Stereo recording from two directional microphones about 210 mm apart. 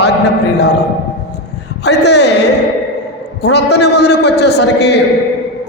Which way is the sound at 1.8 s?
55° left (ahead or behind).